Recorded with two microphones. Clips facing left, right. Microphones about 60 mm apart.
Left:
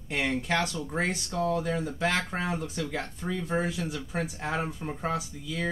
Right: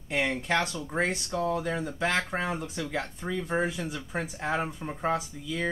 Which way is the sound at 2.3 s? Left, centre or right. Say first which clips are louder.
Even; centre.